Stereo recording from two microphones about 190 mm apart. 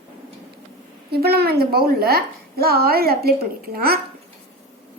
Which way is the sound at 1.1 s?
55° right (ahead or behind).